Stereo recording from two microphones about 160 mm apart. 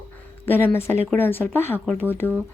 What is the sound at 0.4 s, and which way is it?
Speech, 15° left (ahead or behind).